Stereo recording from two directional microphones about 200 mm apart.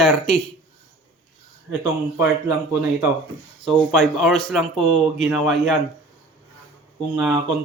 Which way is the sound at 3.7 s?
Centre (ahead or behind).